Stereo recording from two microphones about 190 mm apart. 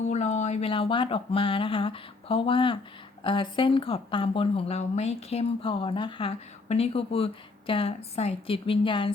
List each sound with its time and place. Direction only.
0.1 s speech: 35° left (ahead or behind)